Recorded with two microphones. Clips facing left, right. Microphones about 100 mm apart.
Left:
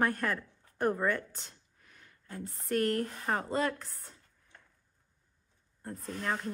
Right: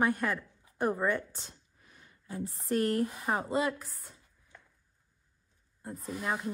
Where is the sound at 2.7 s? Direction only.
15° right (ahead or behind).